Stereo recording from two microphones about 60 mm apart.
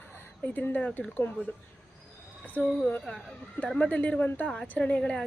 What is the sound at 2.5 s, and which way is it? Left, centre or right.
A woman's voice, left.